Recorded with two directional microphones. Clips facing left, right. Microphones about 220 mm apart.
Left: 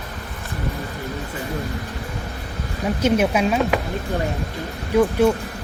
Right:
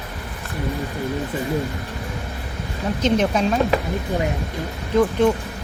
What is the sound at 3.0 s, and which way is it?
Speech, 10° left (ahead or behind).